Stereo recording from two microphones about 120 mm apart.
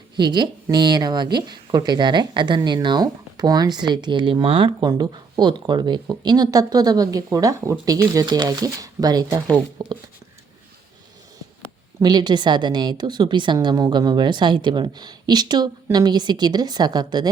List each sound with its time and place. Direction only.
0.2 s speech: 35° right (ahead or behind)
12.0 s speech: 35° right (ahead or behind)